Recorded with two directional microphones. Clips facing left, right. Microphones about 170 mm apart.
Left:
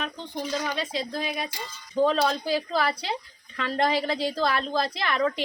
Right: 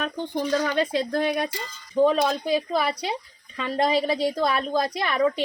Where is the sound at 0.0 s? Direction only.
55° right (ahead or behind).